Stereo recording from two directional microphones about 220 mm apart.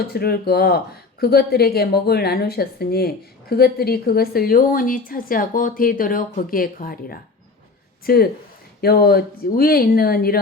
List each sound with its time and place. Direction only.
0.1 s a woman's voice: 45° left (ahead or behind)